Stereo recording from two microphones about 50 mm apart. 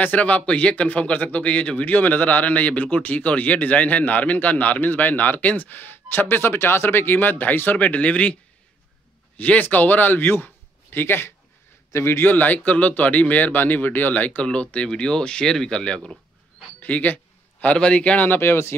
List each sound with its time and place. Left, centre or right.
0.0 s speech: left
9.4 s a man's voice: left
12.3 s speech: left
14.4 s speech: left
16.8 s a sound: left
17.7 s speech: left
18.2 s speech: left